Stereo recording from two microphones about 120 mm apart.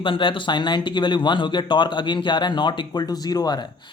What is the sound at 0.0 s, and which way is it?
Speech, 45° left (ahead or behind).